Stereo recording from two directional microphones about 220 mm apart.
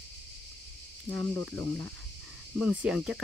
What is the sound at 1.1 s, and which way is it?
Speech, 5° left (ahead or behind).